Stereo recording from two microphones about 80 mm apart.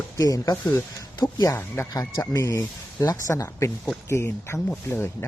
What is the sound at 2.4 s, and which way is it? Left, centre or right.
Speech, left.